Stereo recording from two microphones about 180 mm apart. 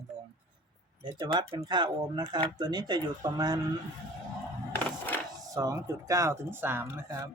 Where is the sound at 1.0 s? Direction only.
25° right (ahead or behind).